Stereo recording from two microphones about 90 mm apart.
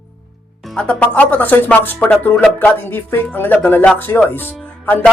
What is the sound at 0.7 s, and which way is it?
Speech, 15° left (ahead or behind).